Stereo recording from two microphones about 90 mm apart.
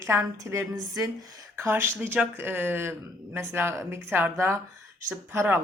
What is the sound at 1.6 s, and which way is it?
Speech, 25° right (ahead or behind).